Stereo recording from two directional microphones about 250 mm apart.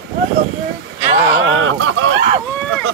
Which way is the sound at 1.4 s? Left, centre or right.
Right.